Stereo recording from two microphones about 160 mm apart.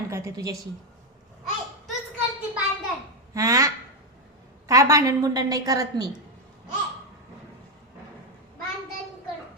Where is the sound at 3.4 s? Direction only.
20° right (ahead or behind).